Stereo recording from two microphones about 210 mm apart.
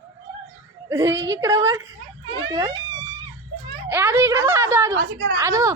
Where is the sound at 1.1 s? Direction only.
60° right (ahead or behind).